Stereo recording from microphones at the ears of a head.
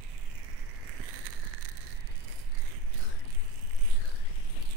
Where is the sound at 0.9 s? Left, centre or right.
Right.